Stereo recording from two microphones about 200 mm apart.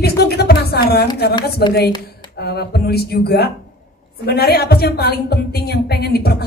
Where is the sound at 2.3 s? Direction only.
55° left (ahead or behind).